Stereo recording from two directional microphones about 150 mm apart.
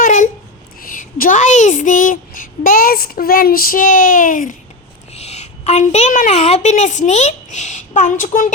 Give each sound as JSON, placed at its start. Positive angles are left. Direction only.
{"t": 0.0, "sound": "a sound", "side_deg": 55}
{"t": 0.8, "sound": "speech", "side_deg": 70}
{"t": 5.1, "sound": "a woman's voice", "side_deg": 45}